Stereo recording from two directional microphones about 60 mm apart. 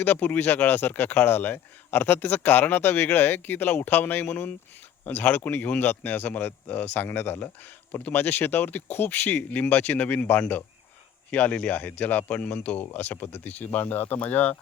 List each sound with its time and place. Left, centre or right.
0.0 s speech: left